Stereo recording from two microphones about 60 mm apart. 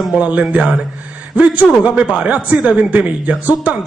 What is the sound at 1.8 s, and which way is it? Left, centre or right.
Speech, right.